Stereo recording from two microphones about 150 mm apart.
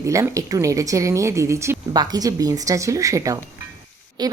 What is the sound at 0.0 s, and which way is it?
A woman's voice, 20° right (ahead or behind).